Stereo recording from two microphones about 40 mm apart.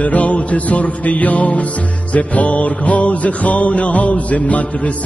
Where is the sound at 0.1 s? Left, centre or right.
Left.